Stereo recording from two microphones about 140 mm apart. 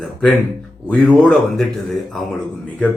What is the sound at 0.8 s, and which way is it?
Speech, 5° left (ahead or behind).